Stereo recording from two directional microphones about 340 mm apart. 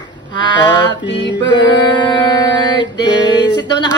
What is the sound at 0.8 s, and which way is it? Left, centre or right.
Music, left.